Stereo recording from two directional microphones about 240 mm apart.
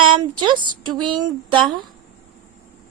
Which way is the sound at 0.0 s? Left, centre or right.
Centre.